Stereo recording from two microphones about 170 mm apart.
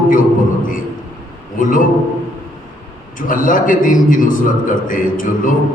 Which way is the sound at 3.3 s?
50° left (ahead or behind).